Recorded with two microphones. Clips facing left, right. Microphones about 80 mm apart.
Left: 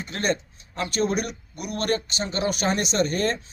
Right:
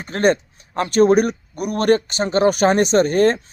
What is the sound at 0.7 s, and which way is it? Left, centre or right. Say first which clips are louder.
A man's voice: right 11 dB; right.